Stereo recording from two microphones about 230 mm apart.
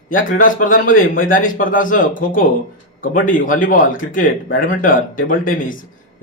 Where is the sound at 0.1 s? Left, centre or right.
Left.